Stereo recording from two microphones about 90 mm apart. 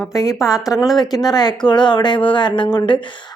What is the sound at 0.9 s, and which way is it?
A woman's voice, 50° left (ahead or behind).